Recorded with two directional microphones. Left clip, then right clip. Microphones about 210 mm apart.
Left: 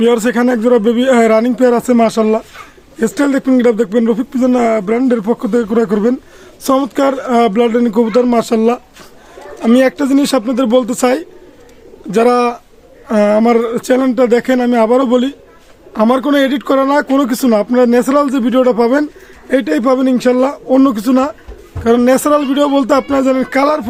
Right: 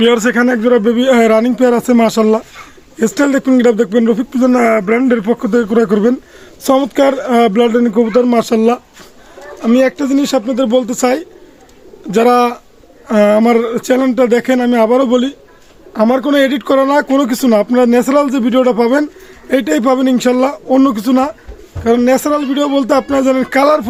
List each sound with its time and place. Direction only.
0.0 s speech: 5° right (ahead or behind)
9.6 s speech: 15° left (ahead or behind)
12.1 s speech: 5° right (ahead or behind)
21.8 s speech: 10° left (ahead or behind); by 23.8 s 15° right (ahead or behind)